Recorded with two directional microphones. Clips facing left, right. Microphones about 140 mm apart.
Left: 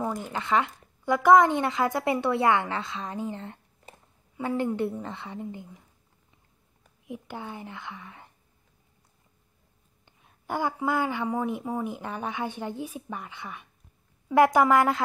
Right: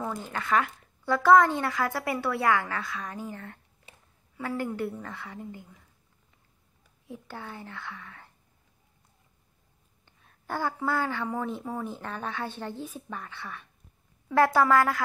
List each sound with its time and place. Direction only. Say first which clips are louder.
0.0 s speech: left 3 dB; 15° left (ahead or behind)
7.1 s a woman's voice: left 3 dB; 15° left (ahead or behind)
10.0 s a woman's voice: left 2 dB; 15° left (ahead or behind)